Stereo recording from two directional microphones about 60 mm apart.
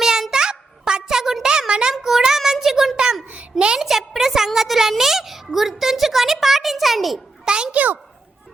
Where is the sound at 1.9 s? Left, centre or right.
Centre.